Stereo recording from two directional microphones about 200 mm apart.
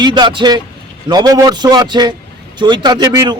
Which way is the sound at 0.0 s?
20° right (ahead or behind).